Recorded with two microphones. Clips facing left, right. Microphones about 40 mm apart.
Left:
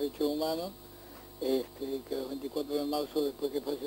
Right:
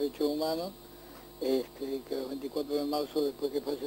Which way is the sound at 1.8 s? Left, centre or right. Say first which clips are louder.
Right 1 dB; centre.